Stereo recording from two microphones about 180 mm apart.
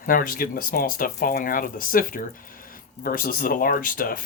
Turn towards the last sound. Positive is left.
turn(degrees=50)  # may be behind; listen again after turning